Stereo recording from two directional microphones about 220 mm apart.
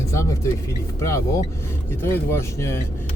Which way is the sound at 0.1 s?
15° left (ahead or behind).